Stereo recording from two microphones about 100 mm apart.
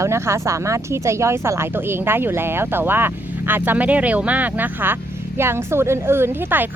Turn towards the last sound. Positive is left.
turn(degrees=-20)  # may be behind; listen again after turning